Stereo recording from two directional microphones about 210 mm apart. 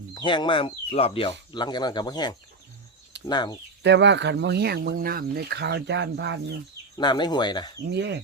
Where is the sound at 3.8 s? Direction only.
55° right (ahead or behind).